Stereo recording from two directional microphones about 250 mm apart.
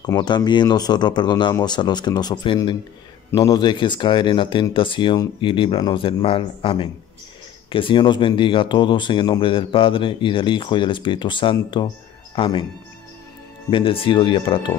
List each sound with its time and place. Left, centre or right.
0.0 s speech: centre
13.7 s speech: left